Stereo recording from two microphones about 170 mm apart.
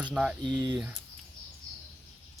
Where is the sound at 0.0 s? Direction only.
5° right (ahead or behind).